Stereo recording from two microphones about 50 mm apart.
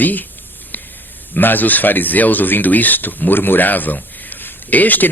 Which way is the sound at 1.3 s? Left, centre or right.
Left.